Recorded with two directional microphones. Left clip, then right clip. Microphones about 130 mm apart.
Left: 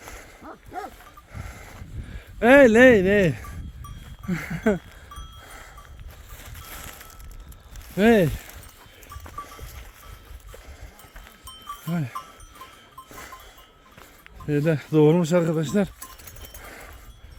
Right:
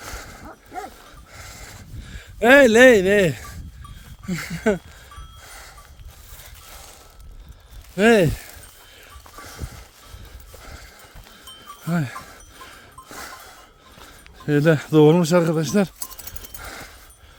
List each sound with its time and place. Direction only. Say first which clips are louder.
0.0 s dog: right 6 dB; 45° right (ahead or behind)
0.4 s dog: left 1 dB; 25° right (ahead or behind)
1.3 s a sound: right 3 dB; 40° right (ahead or behind); by 5.7 s 20° right (ahead or behind)
7.9 s speech: right 3 dB; 20° right (ahead or behind)
9.4 s clip-clop: left 3 dB; 35° right (ahead or behind)
11.9 s a sound: right 6 dB; 50° right (ahead or behind)
14.4 s speech: right 6 dB; 50° right (ahead or behind)
14.9 s speech: right 3 dB; 25° right (ahead or behind)
16.2 s a sound: right 5 dB; 40° right (ahead or behind)